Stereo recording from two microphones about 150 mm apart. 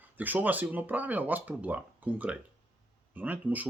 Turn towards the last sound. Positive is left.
turn(degrees=-10)  # may be behind; listen again after turning